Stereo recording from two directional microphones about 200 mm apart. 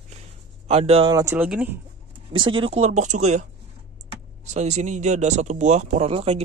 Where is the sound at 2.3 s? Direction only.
25° right (ahead or behind).